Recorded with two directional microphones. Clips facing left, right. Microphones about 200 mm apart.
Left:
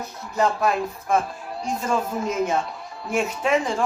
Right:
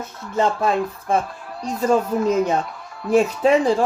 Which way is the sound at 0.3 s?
30° right (ahead or behind).